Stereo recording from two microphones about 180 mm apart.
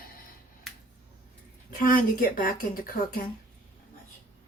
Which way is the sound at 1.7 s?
50° left (ahead or behind).